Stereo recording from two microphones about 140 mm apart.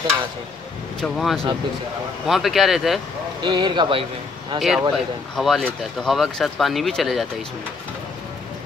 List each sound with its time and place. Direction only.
1.0 s speech: centre (ahead or behind)
3.4 s speech: 35° right (ahead or behind)
4.6 s speech: centre (ahead or behind)